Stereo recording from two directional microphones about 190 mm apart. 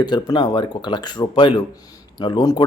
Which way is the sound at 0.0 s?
25° left (ahead or behind).